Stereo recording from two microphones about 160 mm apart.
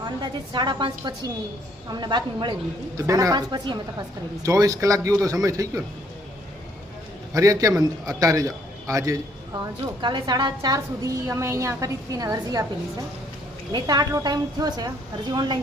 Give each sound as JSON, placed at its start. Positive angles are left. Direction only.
{"t": 0.0, "sound": "a man's voice", "side_deg": -30}
{"t": 7.3, "sound": "a man's voice", "side_deg": -20}
{"t": 13.7, "sound": "a man's voice", "side_deg": -25}